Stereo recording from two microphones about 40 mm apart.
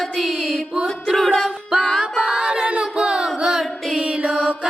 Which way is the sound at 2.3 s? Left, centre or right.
Centre.